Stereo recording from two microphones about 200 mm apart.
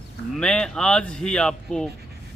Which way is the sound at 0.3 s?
5° left (ahead or behind).